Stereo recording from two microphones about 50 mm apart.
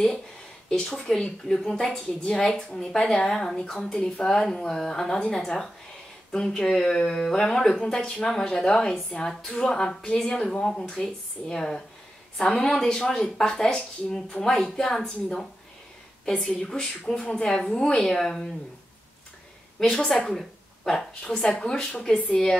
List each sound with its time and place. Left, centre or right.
0.8 s speech: centre
18.0 s speech: centre
19.8 s speech: centre